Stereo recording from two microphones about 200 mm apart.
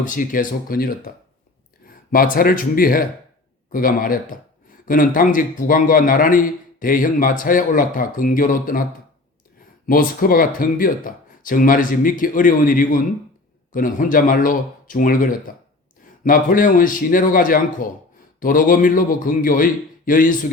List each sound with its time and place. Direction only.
0.0 s a man's voice: 40° left (ahead or behind)